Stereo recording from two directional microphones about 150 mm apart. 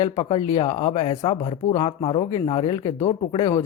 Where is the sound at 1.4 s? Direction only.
45° left (ahead or behind).